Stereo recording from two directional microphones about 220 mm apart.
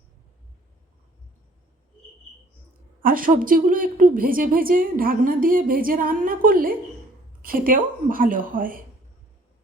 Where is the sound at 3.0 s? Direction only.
40° right (ahead or behind).